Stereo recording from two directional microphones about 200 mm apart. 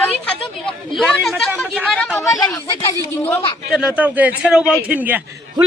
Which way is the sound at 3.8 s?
5° right (ahead or behind).